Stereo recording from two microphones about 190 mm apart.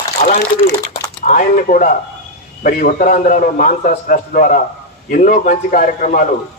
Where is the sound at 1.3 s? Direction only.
45° left (ahead or behind).